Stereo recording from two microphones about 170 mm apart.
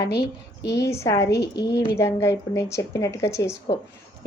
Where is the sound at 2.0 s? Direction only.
15° left (ahead or behind).